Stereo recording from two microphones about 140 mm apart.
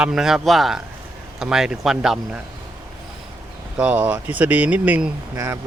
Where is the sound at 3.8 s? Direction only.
10° right (ahead or behind).